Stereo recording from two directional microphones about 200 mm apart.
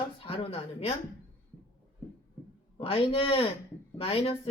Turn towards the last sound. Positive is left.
turn(degrees=30)  # may be behind; listen again after turning